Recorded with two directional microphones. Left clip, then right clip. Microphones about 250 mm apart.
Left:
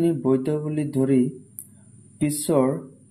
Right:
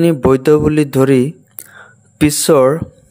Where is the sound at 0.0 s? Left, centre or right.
Right.